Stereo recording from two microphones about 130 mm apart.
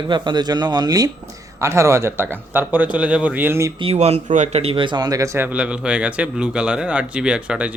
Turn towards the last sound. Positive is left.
turn(degrees=-10)  # may be behind; listen again after turning